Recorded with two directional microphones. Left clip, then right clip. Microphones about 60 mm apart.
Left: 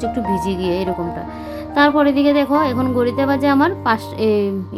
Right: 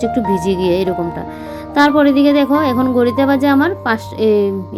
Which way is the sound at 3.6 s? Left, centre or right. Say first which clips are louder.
Right 1 dB; centre.